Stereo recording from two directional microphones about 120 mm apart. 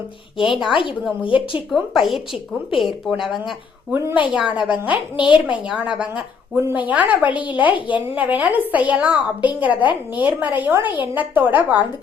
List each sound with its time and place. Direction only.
0.3 s speech: centre (ahead or behind)
0.7 s speech: 45° left (ahead or behind)
1.7 s speech: centre (ahead or behind)
3.9 s a woman's voice: 15° right (ahead or behind)
5.1 s speech: 45° left (ahead or behind)
5.5 s a woman's voice: 5° right (ahead or behind)
6.6 s a woman's voice: 20° right (ahead or behind)